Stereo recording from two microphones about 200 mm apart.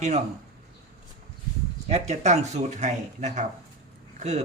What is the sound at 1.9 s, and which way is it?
Speech, 35° right (ahead or behind).